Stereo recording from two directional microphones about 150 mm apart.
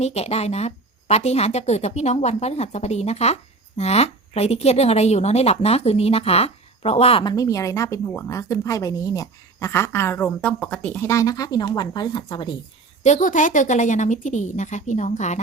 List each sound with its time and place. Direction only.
0.0 s a woman's voice: 45° left (ahead or behind)
7.3 s speech: 20° left (ahead or behind)
13.0 s a woman's voice: 55° left (ahead or behind)